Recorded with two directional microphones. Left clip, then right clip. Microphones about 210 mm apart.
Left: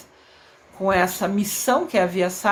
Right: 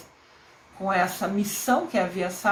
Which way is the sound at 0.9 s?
35° left (ahead or behind).